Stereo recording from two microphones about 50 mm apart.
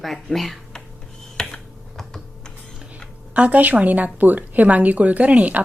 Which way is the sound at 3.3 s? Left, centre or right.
Right.